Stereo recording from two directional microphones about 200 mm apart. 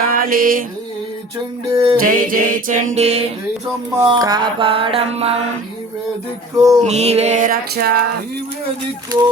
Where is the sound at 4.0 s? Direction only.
20° right (ahead or behind).